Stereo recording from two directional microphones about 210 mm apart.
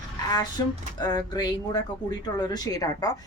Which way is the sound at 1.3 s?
20° left (ahead or behind).